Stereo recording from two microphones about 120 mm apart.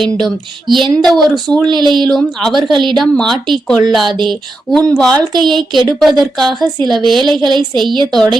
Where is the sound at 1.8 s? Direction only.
40° right (ahead or behind).